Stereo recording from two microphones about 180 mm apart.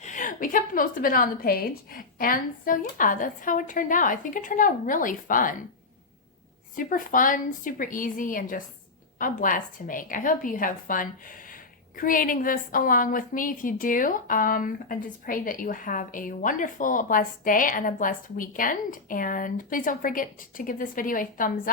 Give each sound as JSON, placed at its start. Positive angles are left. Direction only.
{"t": 0.0, "sound": "a woman's voice", "side_deg": 45}
{"t": 6.7, "sound": "a woman's voice", "side_deg": 50}